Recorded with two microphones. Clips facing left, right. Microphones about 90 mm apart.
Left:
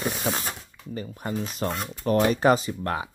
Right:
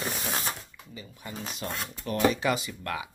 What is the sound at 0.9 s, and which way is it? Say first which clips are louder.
Speech: left 11 dB; 50° left (ahead or behind).